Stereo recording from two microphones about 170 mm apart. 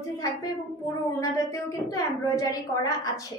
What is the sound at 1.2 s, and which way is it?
A woman's voice, 20° left (ahead or behind).